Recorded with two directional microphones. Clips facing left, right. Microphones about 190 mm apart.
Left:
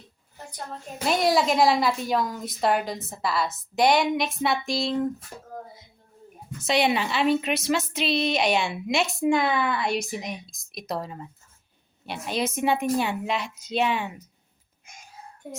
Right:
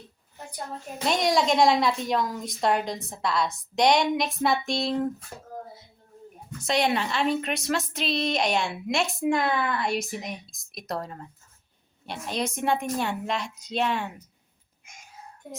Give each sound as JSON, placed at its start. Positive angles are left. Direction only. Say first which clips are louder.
{"t": 0.9, "sound": "a woman's voice", "louder": "left 2 dB", "side_deg": 5}
{"t": 6.6, "sound": "a woman's voice", "louder": "left 2 dB", "side_deg": 0}